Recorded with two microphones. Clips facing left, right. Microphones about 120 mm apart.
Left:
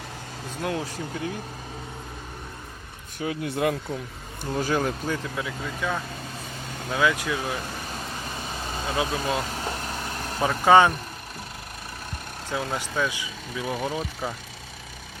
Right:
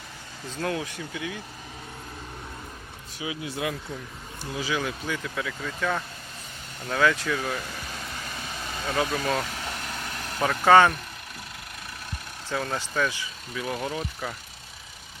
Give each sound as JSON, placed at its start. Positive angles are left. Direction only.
{"t": 0.7, "sound": "speech", "side_deg": 35}
{"t": 3.2, "sound": "speech", "side_deg": 55}
{"t": 5.4, "sound": "speech", "side_deg": 20}
{"t": 7.9, "sound": "vehicle", "side_deg": 30}
{"t": 8.8, "sound": "speech", "side_deg": 20}
{"t": 9.4, "sound": "vehicle", "side_deg": 35}
{"t": 10.5, "sound": "speech", "side_deg": 15}
{"t": 12.5, "sound": "speech", "side_deg": 15}
{"t": 13.8, "sound": "speech", "side_deg": 25}